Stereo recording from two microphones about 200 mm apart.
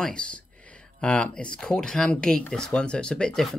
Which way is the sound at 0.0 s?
5° left (ahead or behind).